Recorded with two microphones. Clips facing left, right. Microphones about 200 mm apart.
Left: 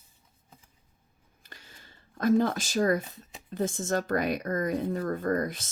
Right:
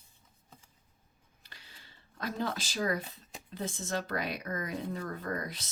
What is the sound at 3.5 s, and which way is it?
Speech, 50° left (ahead or behind).